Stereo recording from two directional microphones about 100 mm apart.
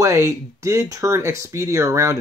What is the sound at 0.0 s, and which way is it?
Speech, 30° right (ahead or behind).